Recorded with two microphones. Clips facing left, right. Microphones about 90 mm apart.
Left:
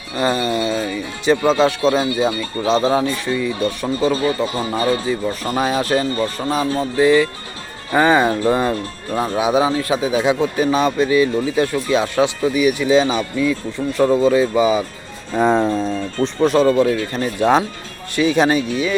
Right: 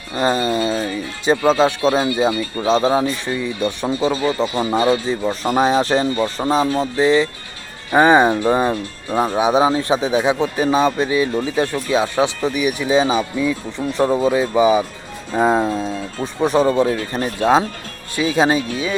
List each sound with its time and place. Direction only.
0.2 s a sound: 30° right (ahead or behind)
1.5 s speech: 25° right (ahead or behind)
18.2 s speech: 20° right (ahead or behind)